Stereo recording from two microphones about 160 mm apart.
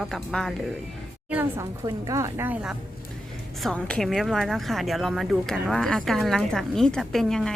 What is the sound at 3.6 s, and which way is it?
Speech, 5° left (ahead or behind).